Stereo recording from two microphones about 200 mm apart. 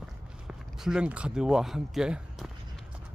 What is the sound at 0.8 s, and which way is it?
Speech, 5° right (ahead or behind).